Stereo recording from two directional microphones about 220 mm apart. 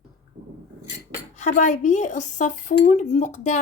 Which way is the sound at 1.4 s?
35° left (ahead or behind).